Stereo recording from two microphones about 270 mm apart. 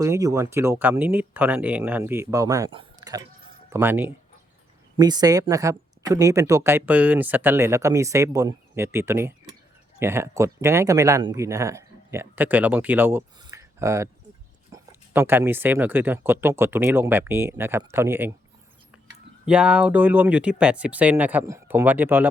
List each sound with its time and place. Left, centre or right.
0.0 s speech: centre
19.5 s speech: centre